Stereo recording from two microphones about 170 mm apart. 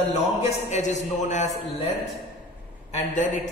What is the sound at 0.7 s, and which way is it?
Speech, 45° left (ahead or behind).